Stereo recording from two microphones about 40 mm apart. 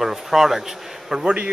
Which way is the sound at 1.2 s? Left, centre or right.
Right.